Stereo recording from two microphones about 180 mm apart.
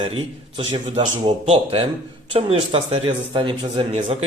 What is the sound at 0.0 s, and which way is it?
Speech, 30° right (ahead or behind).